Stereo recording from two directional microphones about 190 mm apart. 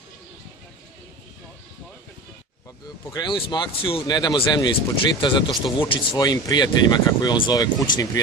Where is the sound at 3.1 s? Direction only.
20° left (ahead or behind).